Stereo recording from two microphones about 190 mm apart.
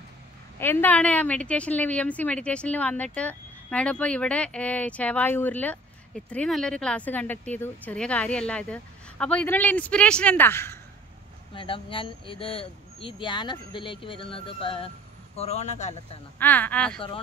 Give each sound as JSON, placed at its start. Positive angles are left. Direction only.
{"t": 0.6, "sound": "a woman's voice", "side_deg": 10}
{"t": 11.5, "sound": "a man's voice", "side_deg": 30}
{"t": 16.3, "sound": "a woman's voice", "side_deg": 10}